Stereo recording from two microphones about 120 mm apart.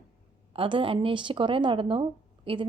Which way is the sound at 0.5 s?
45° right (ahead or behind).